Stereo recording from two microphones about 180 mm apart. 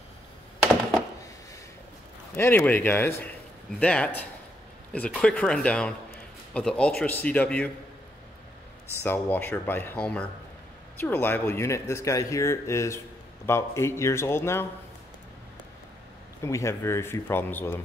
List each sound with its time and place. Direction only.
2.3 s speech: 15° left (ahead or behind)
9.0 s speech: 10° left (ahead or behind)
16.4 s speech: 15° left (ahead or behind)